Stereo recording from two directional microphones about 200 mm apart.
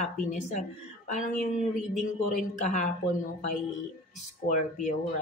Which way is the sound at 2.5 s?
40° left (ahead or behind).